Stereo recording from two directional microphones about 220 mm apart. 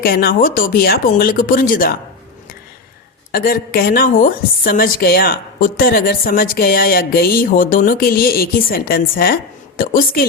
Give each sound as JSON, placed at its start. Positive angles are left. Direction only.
{"t": 0.0, "sound": "a woman's voice", "side_deg": 45}
{"t": 3.3, "sound": "a woman's voice", "side_deg": 40}